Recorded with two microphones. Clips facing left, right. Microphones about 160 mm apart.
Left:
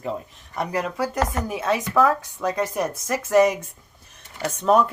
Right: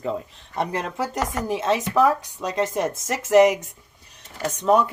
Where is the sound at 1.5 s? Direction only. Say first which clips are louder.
Right 4 dB; 25° right (ahead or behind).